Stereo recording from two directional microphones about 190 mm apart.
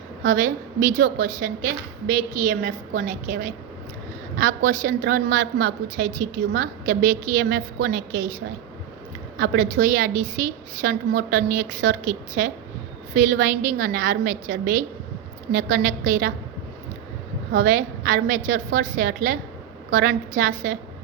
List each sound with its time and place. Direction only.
0.3 s a woman's voice: 45° right (ahead or behind)
9.4 s a woman's voice: 45° right (ahead or behind)
17.5 s a woman's voice: 45° right (ahead or behind)